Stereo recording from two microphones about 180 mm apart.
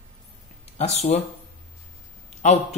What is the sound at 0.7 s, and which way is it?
Speech, 40° left (ahead or behind).